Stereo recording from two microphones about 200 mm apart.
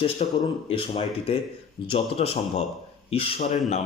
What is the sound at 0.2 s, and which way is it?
Speech, 30° left (ahead or behind).